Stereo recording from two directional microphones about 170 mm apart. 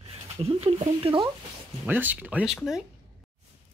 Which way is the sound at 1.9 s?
10° right (ahead or behind).